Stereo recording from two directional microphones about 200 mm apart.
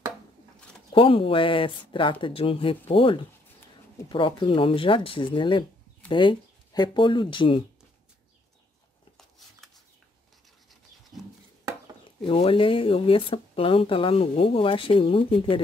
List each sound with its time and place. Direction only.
0.9 s speech: 25° left (ahead or behind)
12.3 s speech: 25° left (ahead or behind)